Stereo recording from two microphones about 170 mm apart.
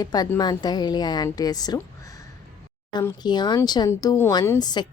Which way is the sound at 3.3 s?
25° left (ahead or behind).